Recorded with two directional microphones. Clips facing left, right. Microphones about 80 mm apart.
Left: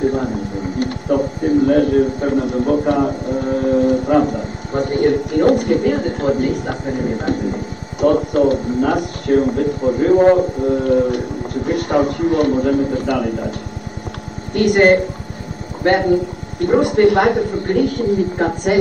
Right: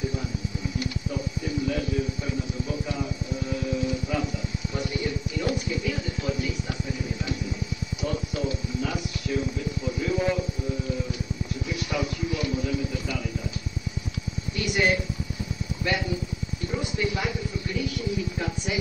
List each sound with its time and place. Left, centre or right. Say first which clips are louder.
0.0 s speech: left 13 dB; left